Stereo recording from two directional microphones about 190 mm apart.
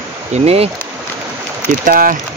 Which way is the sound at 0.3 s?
35° right (ahead or behind).